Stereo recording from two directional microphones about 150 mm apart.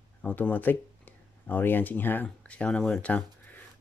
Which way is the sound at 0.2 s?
10° left (ahead or behind).